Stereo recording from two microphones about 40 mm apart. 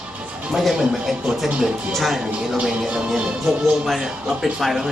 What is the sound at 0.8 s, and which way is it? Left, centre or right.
Speech, centre.